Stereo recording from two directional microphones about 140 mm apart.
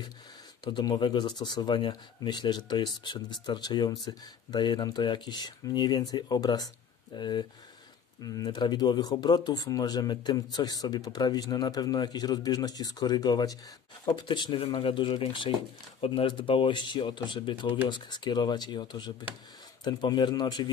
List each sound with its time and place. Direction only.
0.7 s speech: 35° left (ahead or behind)